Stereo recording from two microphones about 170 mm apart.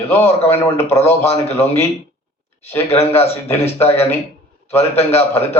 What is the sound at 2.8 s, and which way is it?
Speech, 35° left (ahead or behind).